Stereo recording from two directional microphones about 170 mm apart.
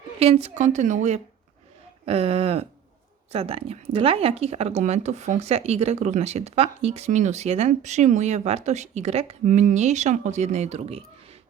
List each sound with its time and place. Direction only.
0.2 s speech: 35° right (ahead or behind)